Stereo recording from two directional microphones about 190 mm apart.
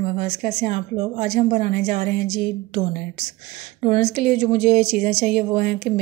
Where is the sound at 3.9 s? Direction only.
40° right (ahead or behind).